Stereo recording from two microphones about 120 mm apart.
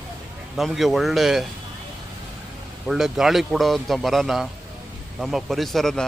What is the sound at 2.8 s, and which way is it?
Speech, 5° right (ahead or behind).